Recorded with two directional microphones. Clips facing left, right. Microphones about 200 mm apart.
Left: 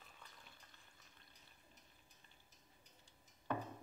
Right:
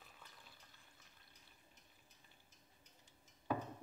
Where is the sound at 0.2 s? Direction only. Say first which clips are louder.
Left 1 dB; 5° right (ahead or behind).